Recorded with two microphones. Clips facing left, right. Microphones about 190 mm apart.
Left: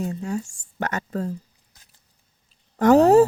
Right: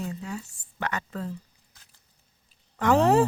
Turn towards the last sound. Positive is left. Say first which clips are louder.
# left 7 dB
turn(degrees=40)  # may be behind; listen again after turning